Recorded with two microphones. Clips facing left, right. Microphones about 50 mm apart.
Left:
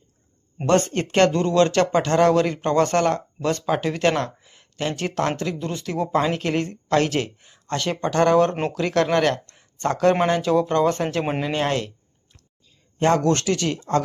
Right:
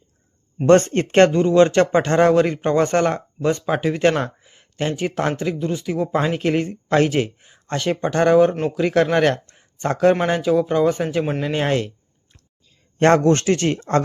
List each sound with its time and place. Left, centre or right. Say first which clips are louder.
0.6 s speech: right 6 dB; right
1.3 s speech: right 4 dB; centre
4.2 s a sound: right 2 dB; right
5.0 s speech: right 1 dB; centre
5.5 s speech: right 3 dB; centre
10.5 s speech: right 2 dB; centre
11.2 s speech: right 2 dB; centre
11.5 s speech: right 4 dB; centre
13.1 s speech: right 4 dB; right